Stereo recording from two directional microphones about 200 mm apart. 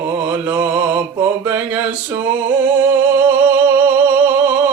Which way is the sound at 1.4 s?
10° right (ahead or behind).